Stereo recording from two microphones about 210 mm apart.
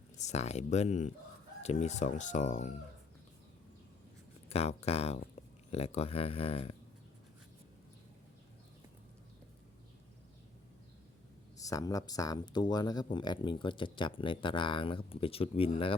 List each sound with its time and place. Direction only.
0.2 s speech: 30° left (ahead or behind)
4.4 s speech: 30° left (ahead or behind)
11.5 s speech: 15° left (ahead or behind)